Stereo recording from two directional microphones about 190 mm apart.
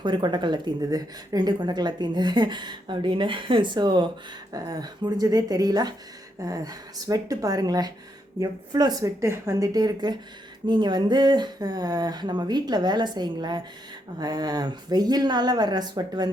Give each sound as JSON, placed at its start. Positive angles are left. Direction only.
{"t": 0.0, "sound": "speech", "side_deg": -25}